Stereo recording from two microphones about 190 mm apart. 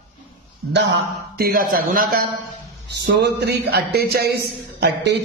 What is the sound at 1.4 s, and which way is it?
A man's voice, 50° right (ahead or behind).